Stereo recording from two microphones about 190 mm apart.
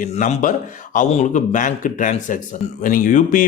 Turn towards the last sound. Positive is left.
turn(degrees=45)  # may be behind; listen again after turning